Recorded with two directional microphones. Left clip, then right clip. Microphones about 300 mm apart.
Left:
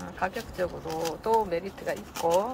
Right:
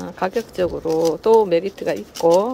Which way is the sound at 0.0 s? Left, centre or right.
Right.